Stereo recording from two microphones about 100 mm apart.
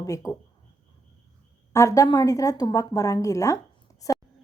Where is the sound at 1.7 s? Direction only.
30° left (ahead or behind).